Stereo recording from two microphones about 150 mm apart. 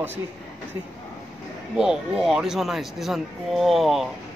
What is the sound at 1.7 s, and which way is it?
Speech, 5° right (ahead or behind).